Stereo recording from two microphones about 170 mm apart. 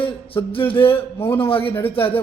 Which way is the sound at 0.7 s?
30° left (ahead or behind).